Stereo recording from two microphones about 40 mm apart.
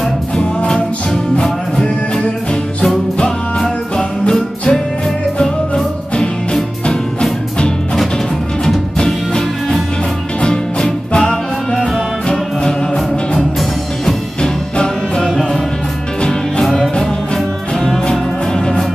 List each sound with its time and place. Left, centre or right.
3.6 s music: centre
6.1 s music: centre
13.4 s music: centre
14.4 s music: left
17.7 s music: centre